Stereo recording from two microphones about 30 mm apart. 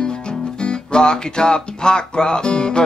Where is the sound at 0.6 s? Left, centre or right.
Left.